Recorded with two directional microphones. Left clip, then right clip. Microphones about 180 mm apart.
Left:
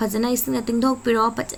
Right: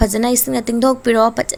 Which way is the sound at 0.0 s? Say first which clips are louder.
Right 6 dB; 35° right (ahead or behind).